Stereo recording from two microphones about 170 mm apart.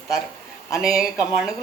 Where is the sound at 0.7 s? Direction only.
Centre (ahead or behind).